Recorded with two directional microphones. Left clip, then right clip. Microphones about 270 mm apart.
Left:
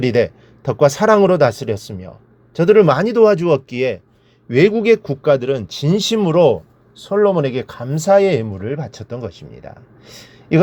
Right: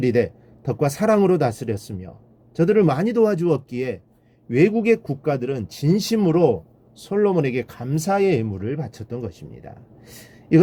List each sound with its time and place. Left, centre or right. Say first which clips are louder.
0.0 s speech: left 4 dB; centre